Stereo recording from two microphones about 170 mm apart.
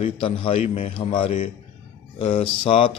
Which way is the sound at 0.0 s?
30° left (ahead or behind).